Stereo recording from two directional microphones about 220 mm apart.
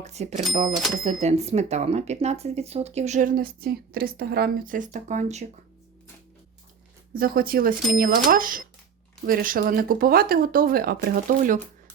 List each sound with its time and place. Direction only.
0.0 s speech: 30° right (ahead or behind)
7.1 s speech: 40° right (ahead or behind)